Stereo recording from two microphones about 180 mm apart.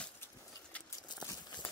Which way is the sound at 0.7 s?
5° left (ahead or behind).